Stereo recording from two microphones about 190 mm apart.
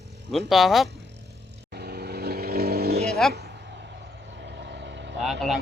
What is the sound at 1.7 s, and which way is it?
Vehicle, 55° right (ahead or behind).